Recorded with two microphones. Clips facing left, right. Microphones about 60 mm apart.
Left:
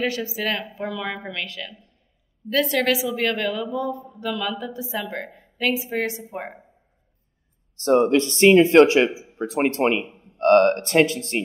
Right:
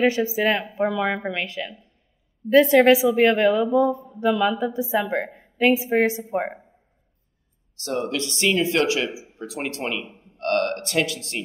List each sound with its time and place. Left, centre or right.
0.0 s a woman's voice: right
7.7 s speech: left